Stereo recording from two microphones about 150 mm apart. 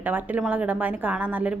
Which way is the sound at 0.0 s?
10° right (ahead or behind).